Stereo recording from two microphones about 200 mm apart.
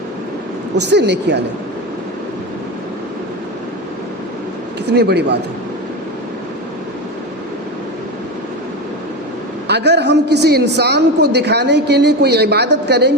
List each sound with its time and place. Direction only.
0.9 s a woman's voice: 60° right (ahead or behind)
4.9 s a woman's voice: 55° right (ahead or behind)
9.6 s a woman's voice: 55° right (ahead or behind)